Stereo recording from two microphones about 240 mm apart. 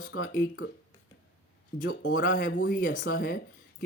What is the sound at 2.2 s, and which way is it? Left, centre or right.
Speech, left.